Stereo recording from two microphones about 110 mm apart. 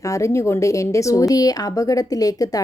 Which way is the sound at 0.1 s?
25° left (ahead or behind).